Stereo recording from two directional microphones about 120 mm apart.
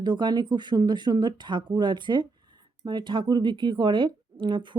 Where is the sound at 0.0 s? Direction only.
40° right (ahead or behind).